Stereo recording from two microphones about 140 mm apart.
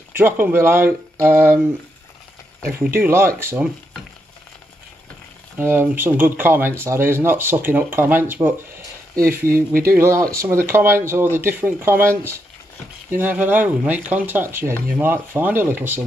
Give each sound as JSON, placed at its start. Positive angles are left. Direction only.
{"t": 0.1, "sound": "speech", "side_deg": -15}
{"t": 1.1, "sound": "a sound", "side_deg": -20}
{"t": 2.7, "sound": "speech", "side_deg": -15}
{"t": 5.6, "sound": "speech", "side_deg": -15}
{"t": 9.1, "sound": "speech", "side_deg": -90}
{"t": 9.9, "sound": "speech", "side_deg": -20}